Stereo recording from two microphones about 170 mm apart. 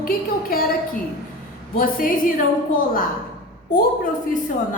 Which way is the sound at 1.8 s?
55° left (ahead or behind).